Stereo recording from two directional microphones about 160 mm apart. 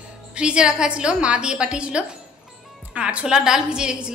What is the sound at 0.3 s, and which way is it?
A woman's voice, 5° right (ahead or behind).